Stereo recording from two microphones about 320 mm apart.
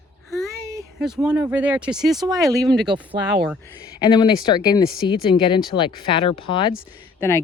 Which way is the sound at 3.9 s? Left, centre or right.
Centre.